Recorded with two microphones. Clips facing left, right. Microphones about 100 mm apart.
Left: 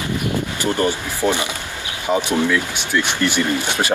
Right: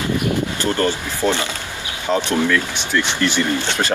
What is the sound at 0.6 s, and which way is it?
Speech, 15° left (ahead or behind).